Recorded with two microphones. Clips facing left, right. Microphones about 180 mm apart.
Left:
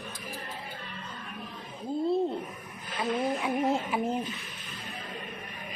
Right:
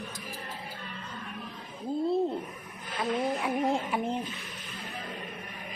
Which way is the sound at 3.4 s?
Centre (ahead or behind).